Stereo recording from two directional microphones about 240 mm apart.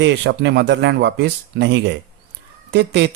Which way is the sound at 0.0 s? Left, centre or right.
Right.